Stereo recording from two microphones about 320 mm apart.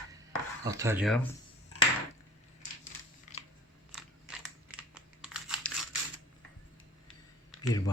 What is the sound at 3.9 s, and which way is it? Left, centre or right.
Crumpling, centre.